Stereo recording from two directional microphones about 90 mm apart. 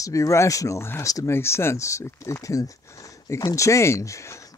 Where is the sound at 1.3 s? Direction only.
30° left (ahead or behind).